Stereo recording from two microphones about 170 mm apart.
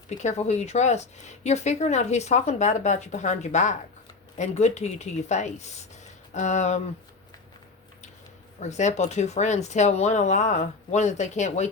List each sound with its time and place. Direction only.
0.1 s speech: 40° left (ahead or behind)
8.6 s speech: 45° left (ahead or behind)